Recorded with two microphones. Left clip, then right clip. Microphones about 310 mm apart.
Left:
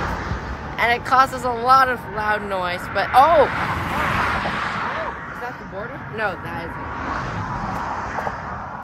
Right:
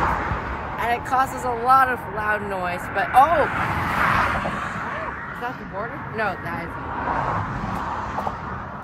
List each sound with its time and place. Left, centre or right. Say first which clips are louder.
0.7 s speech: left 5 dB; centre
1.6 s speech: left 2 dB; centre
2.7 s speech: left 1 dB; centre
3.8 s vehicle: right 3 dB; centre
4.5 s a sound: left 3 dB; centre
7.8 s vehicle: left 1 dB; left